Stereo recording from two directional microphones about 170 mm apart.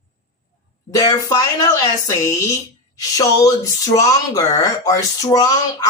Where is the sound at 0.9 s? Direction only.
20° left (ahead or behind).